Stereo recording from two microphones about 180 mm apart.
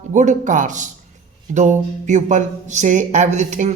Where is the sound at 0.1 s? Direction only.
40° right (ahead or behind).